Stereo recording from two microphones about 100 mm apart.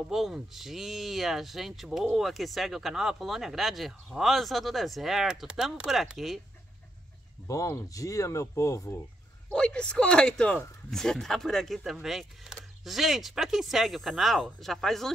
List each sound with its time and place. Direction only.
0.1 s speech: centre (ahead or behind)
7.4 s speech: 35° left (ahead or behind)
9.5 s speech: 10° left (ahead or behind)